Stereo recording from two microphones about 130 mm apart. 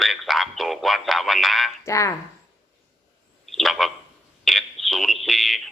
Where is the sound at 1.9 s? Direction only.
25° left (ahead or behind).